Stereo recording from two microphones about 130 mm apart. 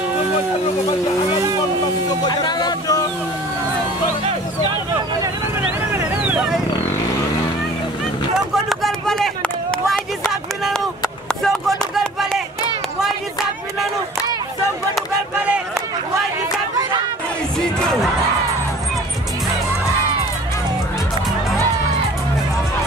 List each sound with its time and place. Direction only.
2.2 s music: 35° left (ahead or behind)
6.3 s vehicle: 5° right (ahead or behind)
8.6 s a sound: centre (ahead or behind)